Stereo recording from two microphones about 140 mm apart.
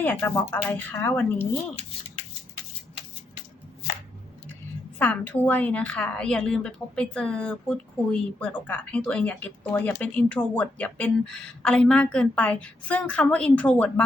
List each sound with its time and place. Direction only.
0.0 s a woman's voice: 15° left (ahead or behind)
4.9 s a woman's voice: 10° left (ahead or behind)